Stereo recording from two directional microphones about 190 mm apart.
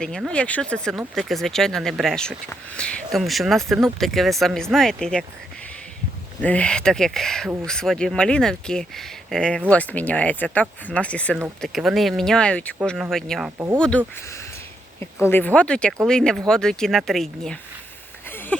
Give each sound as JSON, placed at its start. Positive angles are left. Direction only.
{"t": 0.0, "sound": "speech", "side_deg": 5}
{"t": 6.4, "sound": "speech", "side_deg": 5}
{"t": 15.3, "sound": "speech", "side_deg": 10}
{"t": 18.3, "sound": "a sound", "side_deg": 10}